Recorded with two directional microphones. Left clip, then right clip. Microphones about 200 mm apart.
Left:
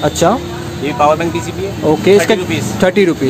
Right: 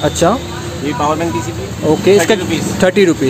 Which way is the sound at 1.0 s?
30° left (ahead or behind).